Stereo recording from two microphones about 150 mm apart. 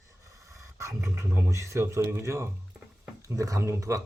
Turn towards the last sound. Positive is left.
turn(degrees=-20)  # may be behind; listen again after turning